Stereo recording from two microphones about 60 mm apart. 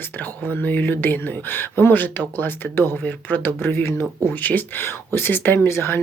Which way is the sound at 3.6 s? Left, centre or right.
Left.